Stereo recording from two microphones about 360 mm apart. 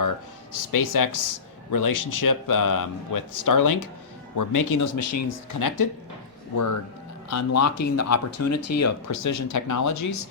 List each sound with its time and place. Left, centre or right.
0.5 s a man's voice: left
7.3 s speech: left